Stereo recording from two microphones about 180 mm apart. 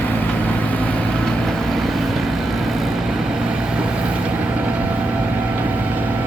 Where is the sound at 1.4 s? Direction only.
Centre (ahead or behind).